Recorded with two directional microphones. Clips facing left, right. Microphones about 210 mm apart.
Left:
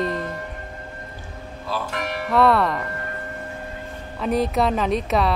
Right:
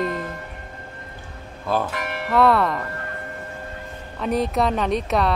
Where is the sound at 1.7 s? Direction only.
55° right (ahead or behind).